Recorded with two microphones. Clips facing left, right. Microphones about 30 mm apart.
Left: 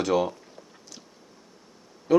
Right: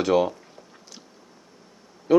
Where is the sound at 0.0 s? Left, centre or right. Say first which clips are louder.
Right 3 dB; centre.